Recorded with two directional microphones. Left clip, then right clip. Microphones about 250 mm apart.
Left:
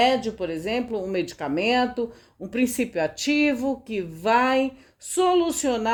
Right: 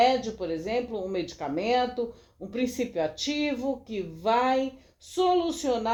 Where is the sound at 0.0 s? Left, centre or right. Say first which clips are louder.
Left 2 dB; left.